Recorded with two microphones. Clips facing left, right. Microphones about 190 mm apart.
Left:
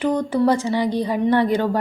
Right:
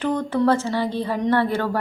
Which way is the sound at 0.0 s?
15° left (ahead or behind).